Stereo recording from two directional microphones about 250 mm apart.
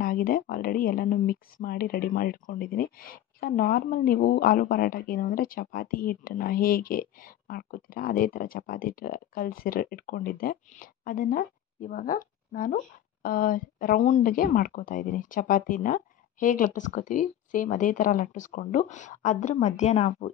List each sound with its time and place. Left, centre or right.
0.0 s speech: left